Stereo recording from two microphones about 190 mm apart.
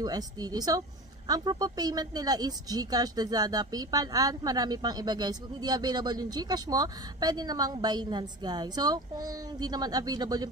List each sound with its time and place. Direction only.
0.0 s a woman's voice: 20° right (ahead or behind)